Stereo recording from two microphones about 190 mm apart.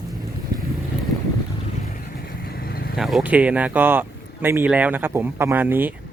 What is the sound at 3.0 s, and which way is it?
Speech, centre (ahead or behind).